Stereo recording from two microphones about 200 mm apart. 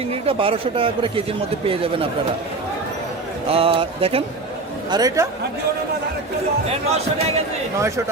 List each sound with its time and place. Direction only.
0.1 s speech: 30° right (ahead or behind)
3.5 s speech: 30° right (ahead or behind)
6.9 s speech: 30° right (ahead or behind)
7.8 s speech: 15° right (ahead or behind)